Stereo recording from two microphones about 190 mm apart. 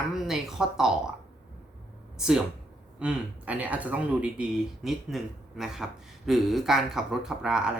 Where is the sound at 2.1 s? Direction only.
5° right (ahead or behind).